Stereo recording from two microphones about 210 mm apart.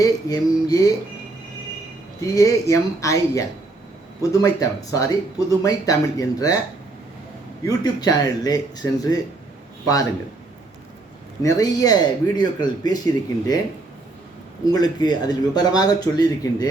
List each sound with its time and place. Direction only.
0.0 s speech: 15° left (ahead or behind)
2.2 s speech: 15° left (ahead or behind)
7.6 s a man's voice: 15° left (ahead or behind)
11.4 s speech: 15° left (ahead or behind)
14.7 s speech: 20° left (ahead or behind)